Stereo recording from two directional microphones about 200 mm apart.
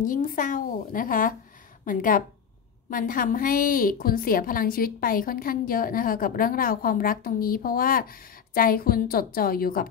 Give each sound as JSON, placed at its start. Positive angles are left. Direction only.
{"t": 0.0, "sound": "a woman's voice", "side_deg": 40}